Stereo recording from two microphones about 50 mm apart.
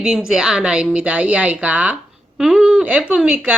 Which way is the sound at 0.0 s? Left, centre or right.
Centre.